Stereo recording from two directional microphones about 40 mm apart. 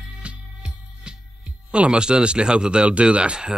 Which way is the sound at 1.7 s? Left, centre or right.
Right.